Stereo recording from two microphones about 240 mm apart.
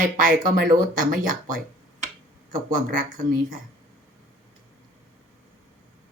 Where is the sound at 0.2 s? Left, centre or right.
Right.